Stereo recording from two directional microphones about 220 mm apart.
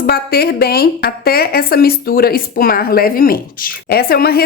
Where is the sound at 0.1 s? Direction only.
45° left (ahead or behind).